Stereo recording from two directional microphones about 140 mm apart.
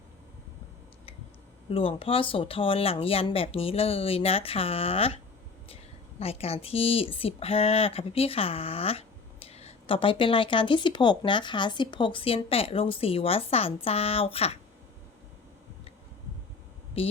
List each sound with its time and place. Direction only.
1.7 s a woman's voice: 40° left (ahead or behind)